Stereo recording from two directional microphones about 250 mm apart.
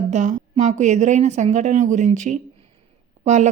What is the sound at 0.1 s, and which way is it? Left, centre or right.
A woman's voice, right.